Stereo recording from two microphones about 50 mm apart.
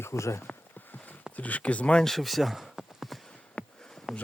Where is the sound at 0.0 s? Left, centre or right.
Left.